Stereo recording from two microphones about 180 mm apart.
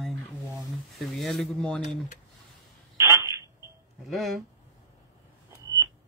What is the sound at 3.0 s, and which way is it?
Telephone, 15° right (ahead or behind).